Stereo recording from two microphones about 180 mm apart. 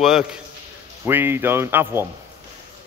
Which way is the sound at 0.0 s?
5° right (ahead or behind).